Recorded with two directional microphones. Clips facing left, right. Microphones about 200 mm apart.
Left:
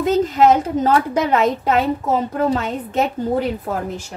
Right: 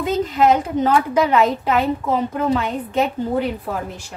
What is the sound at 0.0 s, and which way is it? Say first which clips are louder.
A woman's voice: left 3 dB; 45° left (ahead or behind).